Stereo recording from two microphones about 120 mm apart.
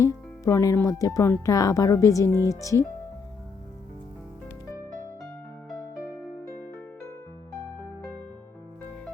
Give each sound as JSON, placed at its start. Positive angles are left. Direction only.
{"t": 0.0, "sound": "speech", "side_deg": 25}
{"t": 6.0, "sound": "music", "side_deg": 25}